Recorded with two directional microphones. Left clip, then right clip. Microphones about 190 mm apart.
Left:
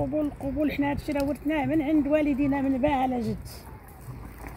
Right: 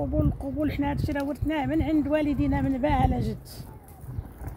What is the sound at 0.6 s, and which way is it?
Speech, 30° left (ahead or behind).